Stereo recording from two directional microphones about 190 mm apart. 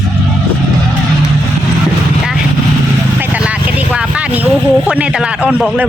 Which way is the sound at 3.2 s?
10° right (ahead or behind).